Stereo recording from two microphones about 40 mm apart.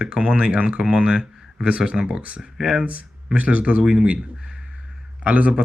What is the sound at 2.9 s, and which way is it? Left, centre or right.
Speech, right.